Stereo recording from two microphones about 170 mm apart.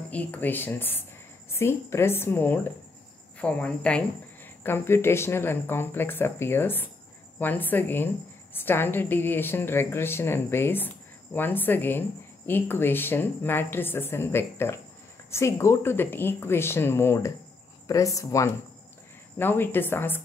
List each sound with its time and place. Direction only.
0.1 s a woman's voice: 10° left (ahead or behind)